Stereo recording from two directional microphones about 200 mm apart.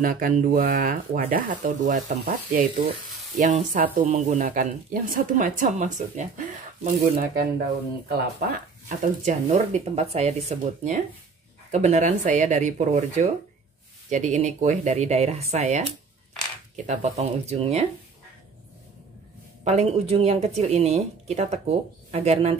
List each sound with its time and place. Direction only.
0.0 s speech: 45° right (ahead or behind)
19.6 s speech: 35° right (ahead or behind)